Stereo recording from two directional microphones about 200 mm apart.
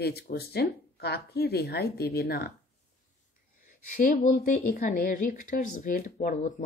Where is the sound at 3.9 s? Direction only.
40° left (ahead or behind).